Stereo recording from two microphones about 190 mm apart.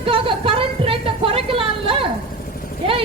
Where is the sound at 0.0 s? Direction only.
30° right (ahead or behind).